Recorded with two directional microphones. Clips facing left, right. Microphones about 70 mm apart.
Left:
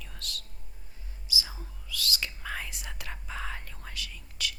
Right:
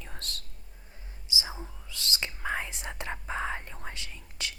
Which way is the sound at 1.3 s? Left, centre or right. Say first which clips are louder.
Right 1 dB; right.